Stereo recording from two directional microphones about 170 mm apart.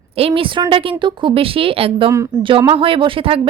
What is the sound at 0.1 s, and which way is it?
Speech, 35° right (ahead or behind).